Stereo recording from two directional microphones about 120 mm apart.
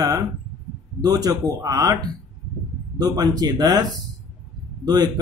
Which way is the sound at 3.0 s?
35° right (ahead or behind).